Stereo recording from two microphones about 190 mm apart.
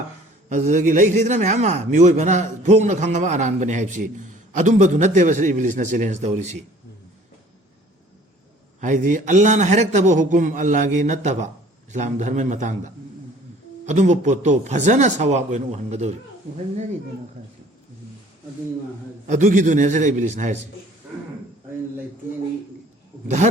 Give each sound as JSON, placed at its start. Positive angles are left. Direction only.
{"t": 0.4, "sound": "a man's voice", "side_deg": -40}
{"t": 8.8, "sound": "a man's voice", "side_deg": -40}
{"t": 19.3, "sound": "a man's voice", "side_deg": -40}